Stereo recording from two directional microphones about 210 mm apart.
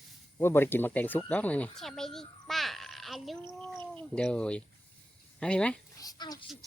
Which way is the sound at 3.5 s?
5° left (ahead or behind).